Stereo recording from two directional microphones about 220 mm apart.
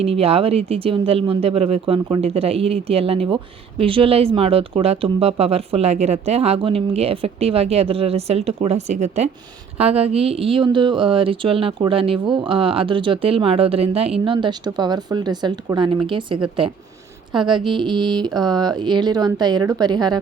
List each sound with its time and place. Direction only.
0.0 s speech: 25° right (ahead or behind)